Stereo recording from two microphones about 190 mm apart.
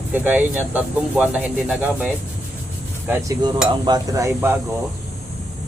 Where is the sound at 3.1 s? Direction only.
15° right (ahead or behind).